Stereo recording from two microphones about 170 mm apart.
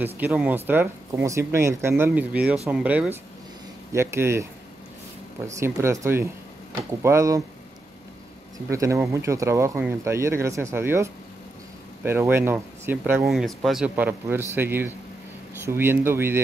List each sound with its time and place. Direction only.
0.0 s speech: 10° right (ahead or behind)
5.6 s speech: 15° right (ahead or behind)
8.6 s speech: 15° right (ahead or behind)